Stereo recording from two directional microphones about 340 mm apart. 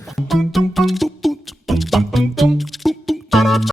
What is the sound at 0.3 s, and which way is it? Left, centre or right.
Music, centre.